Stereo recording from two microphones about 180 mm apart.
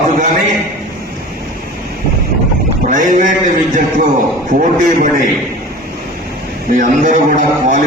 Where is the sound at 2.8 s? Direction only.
45° right (ahead or behind).